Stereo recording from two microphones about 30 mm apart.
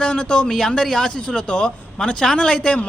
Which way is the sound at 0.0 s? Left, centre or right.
Left.